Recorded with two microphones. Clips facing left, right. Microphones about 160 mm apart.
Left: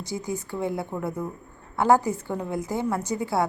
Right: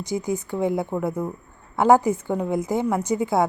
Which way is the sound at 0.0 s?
20° right (ahead or behind).